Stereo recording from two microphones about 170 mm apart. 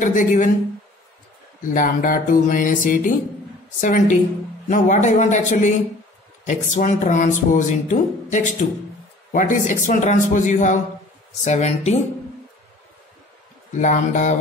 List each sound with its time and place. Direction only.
0.0 s speech: 50° left (ahead or behind)
1.7 s speech: 50° left (ahead or behind)
13.7 s speech: 45° left (ahead or behind)